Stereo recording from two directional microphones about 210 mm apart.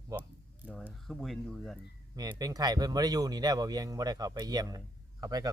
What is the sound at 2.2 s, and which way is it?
Speech, 20° right (ahead or behind).